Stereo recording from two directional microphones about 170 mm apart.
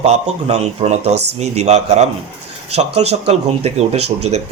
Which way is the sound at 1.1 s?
80° right.